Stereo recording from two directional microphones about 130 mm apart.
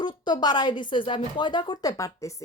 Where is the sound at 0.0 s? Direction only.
35° left (ahead or behind).